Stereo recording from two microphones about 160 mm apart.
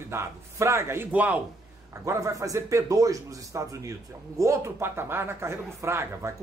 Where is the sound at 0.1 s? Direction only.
15° right (ahead or behind).